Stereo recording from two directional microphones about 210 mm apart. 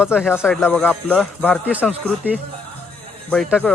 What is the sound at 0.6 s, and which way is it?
Speech, 10° left (ahead or behind).